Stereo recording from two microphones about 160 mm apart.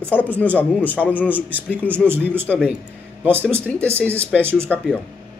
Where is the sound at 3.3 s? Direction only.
15° right (ahead or behind).